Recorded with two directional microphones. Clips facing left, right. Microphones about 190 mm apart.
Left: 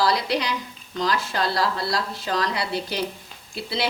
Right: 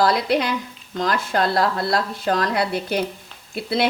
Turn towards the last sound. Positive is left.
turn(degrees=-55)  # may be behind; listen again after turning